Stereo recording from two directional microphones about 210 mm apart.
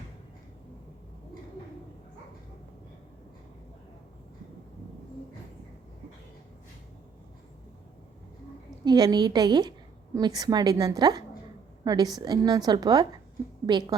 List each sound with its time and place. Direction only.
8.8 s a woman's voice: 20° right (ahead or behind)